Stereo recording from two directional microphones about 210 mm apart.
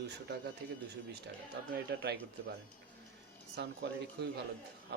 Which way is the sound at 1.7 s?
50° right (ahead or behind).